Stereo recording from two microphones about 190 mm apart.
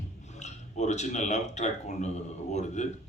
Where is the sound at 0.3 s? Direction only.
35° left (ahead or behind).